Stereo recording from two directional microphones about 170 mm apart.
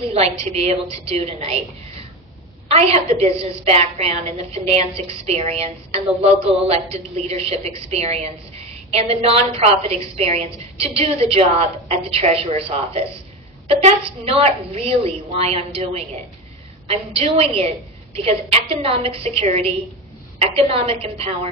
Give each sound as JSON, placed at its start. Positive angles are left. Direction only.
{"t": 0.1, "sound": "a woman's voice", "side_deg": -40}
{"t": 2.7, "sound": "a woman's voice", "side_deg": -40}